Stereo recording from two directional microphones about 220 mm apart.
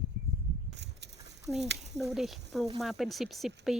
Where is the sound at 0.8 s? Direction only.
50° right (ahead or behind).